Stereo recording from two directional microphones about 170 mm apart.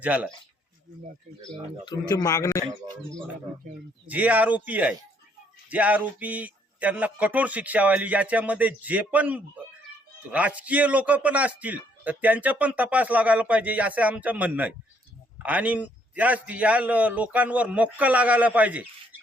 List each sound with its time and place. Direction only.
0.0 s a man's voice: 10° right (ahead or behind)
1.8 s a man's voice: 25° left (ahead or behind)
4.1 s a man's voice: 10° right (ahead or behind)